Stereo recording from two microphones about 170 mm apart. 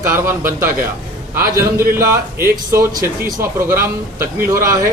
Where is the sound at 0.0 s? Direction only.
15° right (ahead or behind).